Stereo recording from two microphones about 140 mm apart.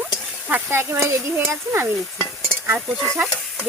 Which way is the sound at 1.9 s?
Centre (ahead or behind).